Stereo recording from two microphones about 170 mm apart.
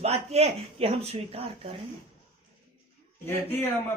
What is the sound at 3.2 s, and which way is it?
Speech, 15° left (ahead or behind).